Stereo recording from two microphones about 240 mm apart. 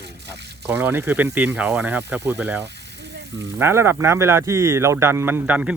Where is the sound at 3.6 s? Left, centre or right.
Centre.